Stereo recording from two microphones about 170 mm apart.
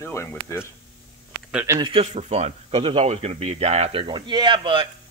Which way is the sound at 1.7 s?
25° right (ahead or behind).